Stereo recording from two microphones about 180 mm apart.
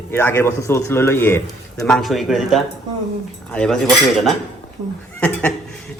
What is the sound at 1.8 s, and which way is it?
Speech, centre (ahead or behind).